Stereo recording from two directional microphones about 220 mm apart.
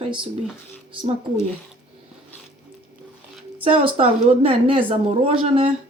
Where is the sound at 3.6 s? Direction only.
25° right (ahead or behind).